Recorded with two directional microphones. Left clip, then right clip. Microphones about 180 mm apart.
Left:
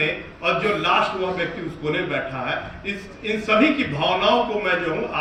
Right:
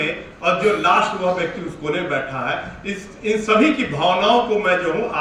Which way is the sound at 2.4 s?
25° right (ahead or behind).